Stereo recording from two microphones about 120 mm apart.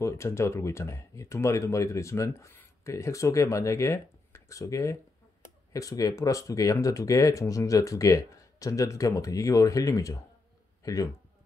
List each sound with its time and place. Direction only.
0.0 s speech: 25° left (ahead or behind)